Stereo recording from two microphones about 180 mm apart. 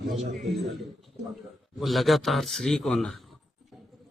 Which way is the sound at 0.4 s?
Centre (ahead or behind).